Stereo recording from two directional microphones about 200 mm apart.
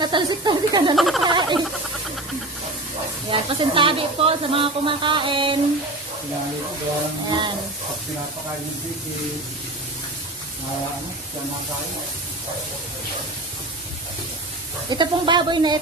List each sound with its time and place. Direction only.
0.0 s speech: 20° right (ahead or behind)
0.9 s a sound: centre (ahead or behind)
1.2 s frog: 20° right (ahead or behind)
3.2 s speech: 25° right (ahead or behind)
7.3 s speech: 25° right (ahead or behind)
14.8 s speech: 25° right (ahead or behind)